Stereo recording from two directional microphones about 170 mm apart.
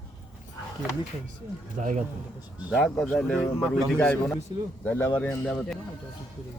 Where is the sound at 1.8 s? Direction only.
50° right (ahead or behind).